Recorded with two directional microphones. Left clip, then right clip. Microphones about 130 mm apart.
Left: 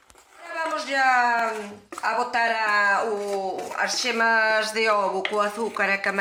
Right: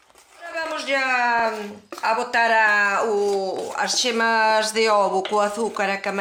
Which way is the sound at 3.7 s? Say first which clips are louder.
Right 2 dB; 90° right.